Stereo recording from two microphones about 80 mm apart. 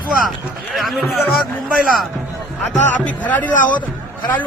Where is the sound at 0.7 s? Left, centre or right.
Centre.